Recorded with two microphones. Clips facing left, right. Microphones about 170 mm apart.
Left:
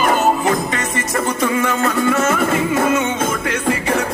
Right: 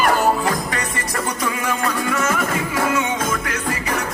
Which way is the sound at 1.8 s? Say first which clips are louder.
Left 5 dB; 25° left (ahead or behind).